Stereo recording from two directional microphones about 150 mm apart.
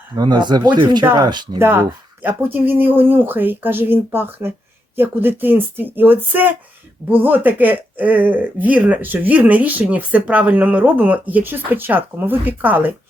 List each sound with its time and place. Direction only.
0.2 s speech: 30° right (ahead or behind)
1.5 s speech: 15° right (ahead or behind)